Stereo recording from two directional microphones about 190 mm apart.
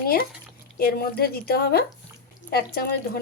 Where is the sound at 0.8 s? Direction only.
50° left (ahead or behind).